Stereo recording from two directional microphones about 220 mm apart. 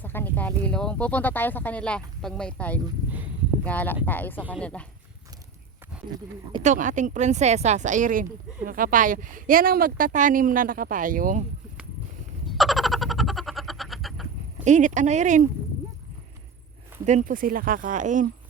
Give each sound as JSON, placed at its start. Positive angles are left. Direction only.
{"t": 0.0, "sound": "speech", "side_deg": 10}
{"t": 6.6, "sound": "speech", "side_deg": -35}
{"t": 12.5, "sound": "frog", "side_deg": 0}
{"t": 14.6, "sound": "speech", "side_deg": -35}
{"t": 17.1, "sound": "speech", "side_deg": -35}